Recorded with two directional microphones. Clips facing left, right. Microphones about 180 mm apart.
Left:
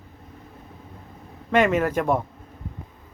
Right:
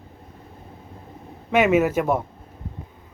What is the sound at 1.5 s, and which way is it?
Speech, 10° right (ahead or behind).